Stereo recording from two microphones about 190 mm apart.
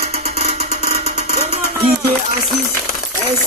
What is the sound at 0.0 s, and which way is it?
Music, 35° right (ahead or behind).